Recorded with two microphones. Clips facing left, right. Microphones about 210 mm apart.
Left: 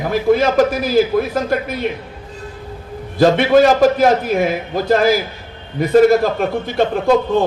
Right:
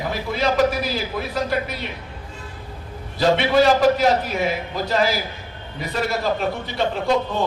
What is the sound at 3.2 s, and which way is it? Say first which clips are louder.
A man's voice: left 6 dB; 50° left (ahead or behind).